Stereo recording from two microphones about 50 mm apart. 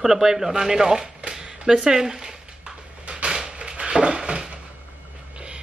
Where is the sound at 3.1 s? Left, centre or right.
Centre.